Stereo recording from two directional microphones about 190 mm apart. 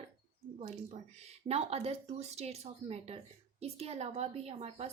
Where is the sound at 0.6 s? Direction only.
35° right (ahead or behind).